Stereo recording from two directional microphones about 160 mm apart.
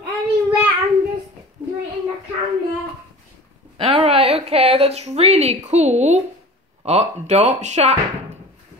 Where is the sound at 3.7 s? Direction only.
35° right (ahead or behind).